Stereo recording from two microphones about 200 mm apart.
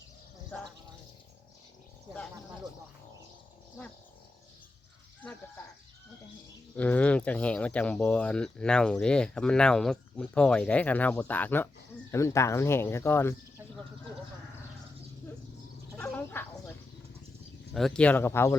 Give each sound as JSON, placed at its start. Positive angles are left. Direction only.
{"t": 5.2, "sound": "speech", "side_deg": 5}
{"t": 6.7, "sound": "speech", "side_deg": 5}
{"t": 16.0, "sound": "bow-wow", "side_deg": 10}
{"t": 17.7, "sound": "speech", "side_deg": 5}